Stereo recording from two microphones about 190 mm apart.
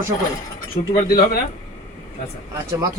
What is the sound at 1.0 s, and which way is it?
Speech, 50° left (ahead or behind).